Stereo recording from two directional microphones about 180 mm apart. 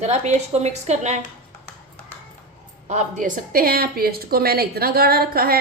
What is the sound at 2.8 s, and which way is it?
A woman's voice, 40° right (ahead or behind).